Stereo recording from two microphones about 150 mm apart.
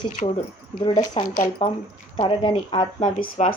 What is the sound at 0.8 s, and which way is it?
A woman's voice, 30° left (ahead or behind).